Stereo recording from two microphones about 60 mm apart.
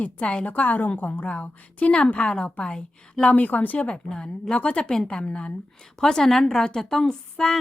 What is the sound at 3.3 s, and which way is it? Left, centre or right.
A woman's voice, left.